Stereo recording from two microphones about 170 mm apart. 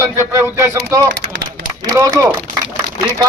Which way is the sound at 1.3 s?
90° right.